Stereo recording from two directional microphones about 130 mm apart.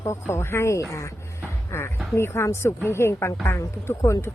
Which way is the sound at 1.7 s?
20° left (ahead or behind).